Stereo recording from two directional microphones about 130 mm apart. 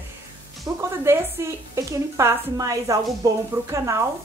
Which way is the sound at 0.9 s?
20° right (ahead or behind).